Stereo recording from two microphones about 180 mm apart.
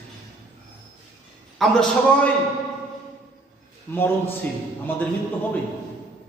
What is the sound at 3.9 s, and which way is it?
Speech, 10° left (ahead or behind).